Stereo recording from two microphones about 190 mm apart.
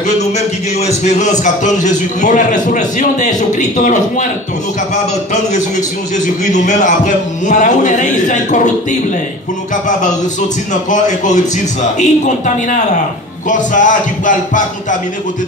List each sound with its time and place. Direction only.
0.2 s a man's voice: 35° left (ahead or behind)
10.7 s a man's voice: 40° left (ahead or behind)